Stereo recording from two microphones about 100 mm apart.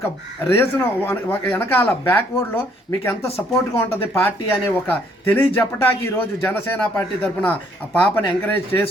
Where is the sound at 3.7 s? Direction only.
25° left (ahead or behind).